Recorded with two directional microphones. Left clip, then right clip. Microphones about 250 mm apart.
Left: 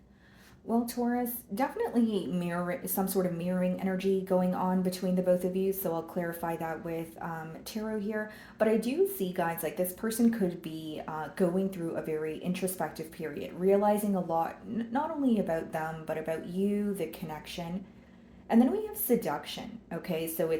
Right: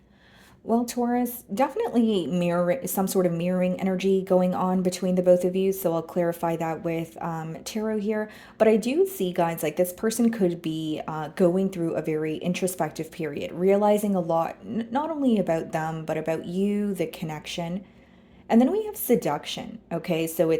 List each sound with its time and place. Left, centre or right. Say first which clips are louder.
0.7 s speech: right 6 dB; right